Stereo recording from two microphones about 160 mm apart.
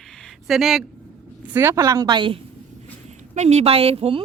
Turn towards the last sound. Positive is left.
turn(degrees=-35)  # may be behind; listen again after turning